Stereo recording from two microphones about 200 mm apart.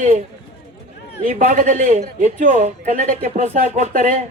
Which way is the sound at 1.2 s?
40° right (ahead or behind).